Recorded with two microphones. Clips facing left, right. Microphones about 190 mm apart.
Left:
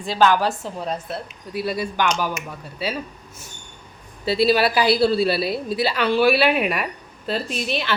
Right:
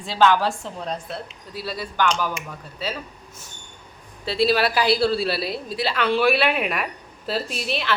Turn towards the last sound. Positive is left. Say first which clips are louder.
# left 1 dB
turn(degrees=0)  # may be behind; listen again after turning